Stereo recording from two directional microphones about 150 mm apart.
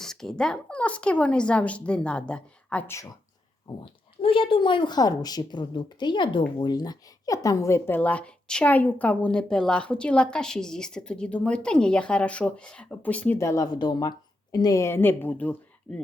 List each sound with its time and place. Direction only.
0.0 s speech: 5° left (ahead or behind)
3.8 s speech: 35° left (ahead or behind); by 16.0 s 10° left (ahead or behind)